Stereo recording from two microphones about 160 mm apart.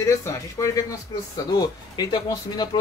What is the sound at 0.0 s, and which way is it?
Speech, 20° left (ahead or behind).